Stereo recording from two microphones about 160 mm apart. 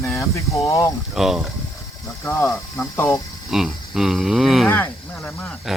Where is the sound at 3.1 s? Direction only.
Centre (ahead or behind).